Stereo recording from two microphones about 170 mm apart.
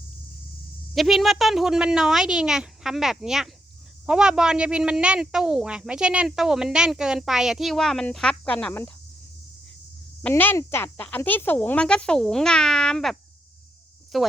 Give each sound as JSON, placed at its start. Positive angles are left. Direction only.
{"t": 0.9, "sound": "speech", "side_deg": 0}
{"t": 10.2, "sound": "speech", "side_deg": 10}